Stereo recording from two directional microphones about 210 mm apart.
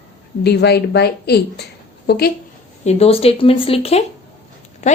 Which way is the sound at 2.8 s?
30° left (ahead or behind).